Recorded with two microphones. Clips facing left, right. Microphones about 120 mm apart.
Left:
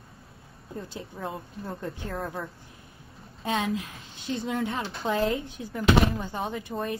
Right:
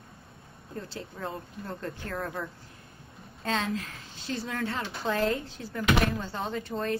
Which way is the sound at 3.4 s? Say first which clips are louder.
Left 2 dB; 15° left (ahead or behind).